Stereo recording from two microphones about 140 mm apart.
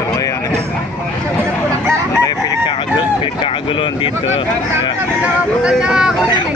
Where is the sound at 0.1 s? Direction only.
25° left (ahead or behind).